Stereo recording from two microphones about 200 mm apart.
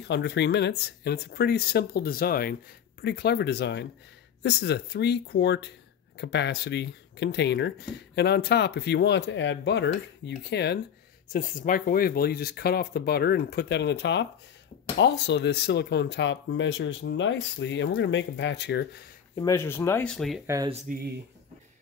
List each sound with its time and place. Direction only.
0.1 s speech: 60° left (ahead or behind)
11.3 s speech: 45° left (ahead or behind)
19.3 s speech: 15° left (ahead or behind)
20.4 s speech: 15° right (ahead or behind)